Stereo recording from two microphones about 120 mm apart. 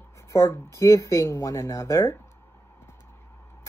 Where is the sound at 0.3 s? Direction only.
25° left (ahead or behind).